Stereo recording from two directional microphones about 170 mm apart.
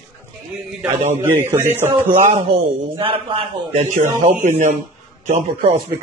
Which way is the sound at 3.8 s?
45° right (ahead or behind).